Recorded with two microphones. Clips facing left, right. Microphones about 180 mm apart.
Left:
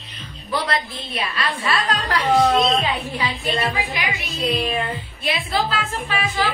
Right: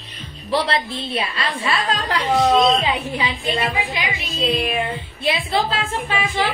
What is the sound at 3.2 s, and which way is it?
A woman's voice, 25° right (ahead or behind).